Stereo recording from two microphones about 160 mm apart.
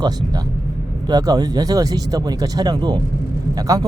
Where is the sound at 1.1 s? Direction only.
25° right (ahead or behind).